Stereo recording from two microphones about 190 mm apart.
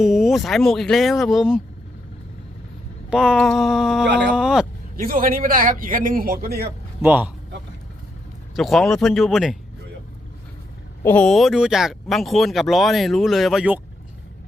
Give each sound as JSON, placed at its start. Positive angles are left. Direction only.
{"t": 0.0, "sound": "speech", "side_deg": 0}
{"t": 3.1, "sound": "speech", "side_deg": -5}
{"t": 4.9, "sound": "a man's voice", "side_deg": -50}
{"t": 7.0, "sound": "a man's voice", "side_deg": -10}
{"t": 8.5, "sound": "speech", "side_deg": 0}
{"t": 11.0, "sound": "speech", "side_deg": 5}